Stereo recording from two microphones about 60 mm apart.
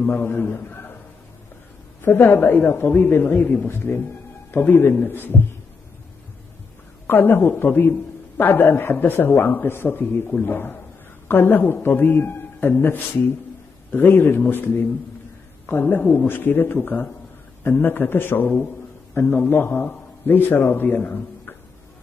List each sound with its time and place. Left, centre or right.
0.0 s a man's voice: left
2.0 s a woman's voice: left
7.1 s a woman's voice: left